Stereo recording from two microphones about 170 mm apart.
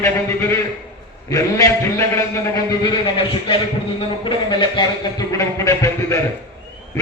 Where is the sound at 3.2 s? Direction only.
30° left (ahead or behind).